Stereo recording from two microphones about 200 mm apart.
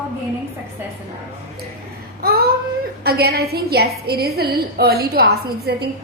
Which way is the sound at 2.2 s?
50° right (ahead or behind).